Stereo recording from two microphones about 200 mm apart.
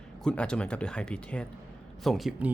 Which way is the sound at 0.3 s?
5° left (ahead or behind).